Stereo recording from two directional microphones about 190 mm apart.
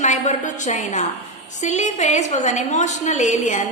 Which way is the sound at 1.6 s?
35° left (ahead or behind).